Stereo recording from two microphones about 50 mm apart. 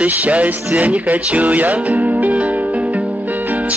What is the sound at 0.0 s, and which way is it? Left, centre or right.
Music, right.